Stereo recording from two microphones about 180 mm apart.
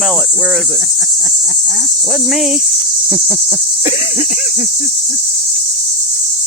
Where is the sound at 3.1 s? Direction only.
15° right (ahead or behind).